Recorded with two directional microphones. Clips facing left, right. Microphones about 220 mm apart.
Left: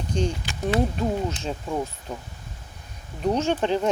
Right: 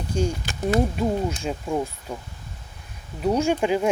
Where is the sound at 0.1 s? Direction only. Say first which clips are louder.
Right 1 dB; 10° right (ahead or behind).